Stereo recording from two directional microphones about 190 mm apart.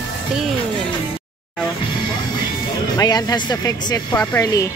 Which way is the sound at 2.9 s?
20° left (ahead or behind).